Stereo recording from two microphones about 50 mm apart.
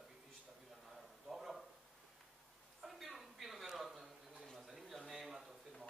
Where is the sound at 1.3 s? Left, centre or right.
Centre.